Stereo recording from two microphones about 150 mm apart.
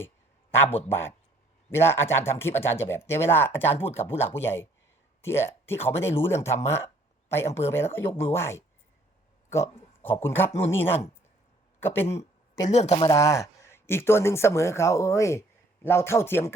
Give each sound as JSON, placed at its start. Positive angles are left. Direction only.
{"t": 0.5, "sound": "speech", "side_deg": 15}
{"t": 12.6, "sound": "speech", "side_deg": 45}
{"t": 13.1, "sound": "speech", "side_deg": 20}